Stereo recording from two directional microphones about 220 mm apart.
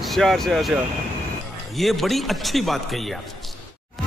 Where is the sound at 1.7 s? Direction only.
Centre (ahead or behind).